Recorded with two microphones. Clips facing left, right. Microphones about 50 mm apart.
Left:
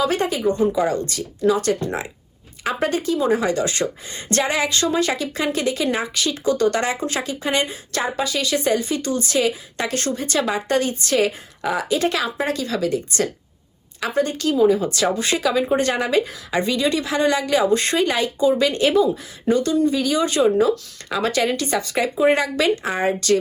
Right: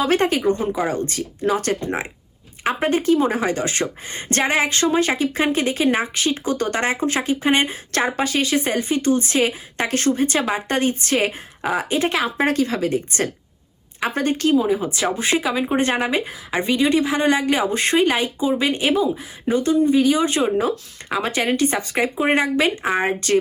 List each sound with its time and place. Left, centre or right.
0.0 s a woman's voice: right
1.7 s a woman's voice: right
7.9 s a woman's voice: right
14.5 s speech: centre
21.1 s speech: centre
21.3 s speech: right